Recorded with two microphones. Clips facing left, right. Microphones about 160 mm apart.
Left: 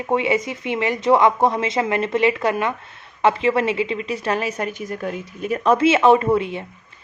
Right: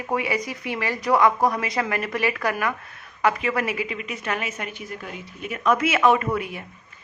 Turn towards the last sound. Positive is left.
turn(degrees=25)  # may be behind; listen again after turning